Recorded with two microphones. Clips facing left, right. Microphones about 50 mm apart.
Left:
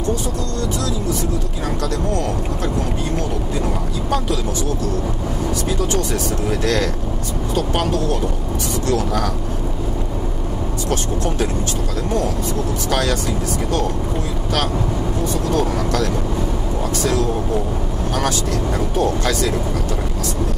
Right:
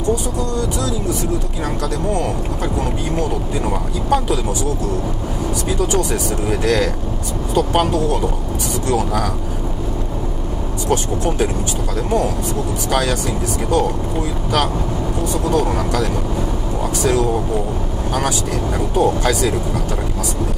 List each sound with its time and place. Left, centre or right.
3.2 s speech: centre
5.7 s speech: centre
8.8 s speech: centre
10.9 s speech: centre
12.9 s speech: centre
15.4 s speech: centre